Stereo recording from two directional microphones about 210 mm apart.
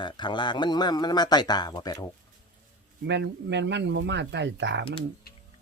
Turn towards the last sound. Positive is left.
turn(degrees=-55)  # may be behind; listen again after turning